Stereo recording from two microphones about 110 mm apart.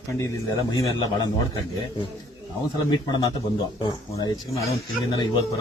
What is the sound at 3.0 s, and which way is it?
A man's voice, 40° left (ahead or behind).